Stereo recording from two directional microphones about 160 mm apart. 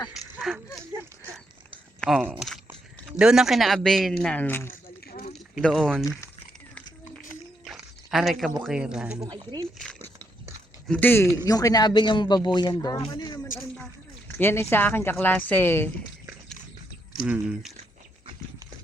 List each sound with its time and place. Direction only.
0.1 s a sound: centre (ahead or behind)
2.0 s a woman's voice: centre (ahead or behind)
7.6 s a sound: centre (ahead or behind)
8.6 s speech: 5° right (ahead or behind)
9.1 s speech: 25° right (ahead or behind)
9.7 s a sound: 5° left (ahead or behind)
10.8 s a woman's voice: 10° left (ahead or behind); by 13.4 s 25° left (ahead or behind)
14.3 s a woman's voice: 15° left (ahead or behind)
17.2 s speech: 10° right (ahead or behind)